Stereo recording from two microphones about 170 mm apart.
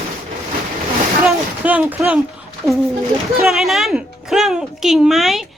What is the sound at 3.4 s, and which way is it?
A woman's voice, centre (ahead or behind).